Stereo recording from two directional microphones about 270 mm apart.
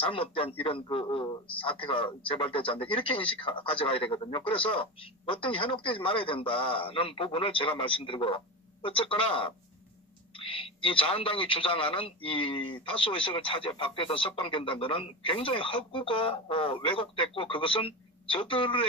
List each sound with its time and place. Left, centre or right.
0.0 s a man's voice: centre